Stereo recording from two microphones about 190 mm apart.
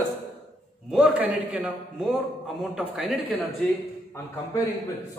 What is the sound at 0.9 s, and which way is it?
A man's voice, 5° right (ahead or behind).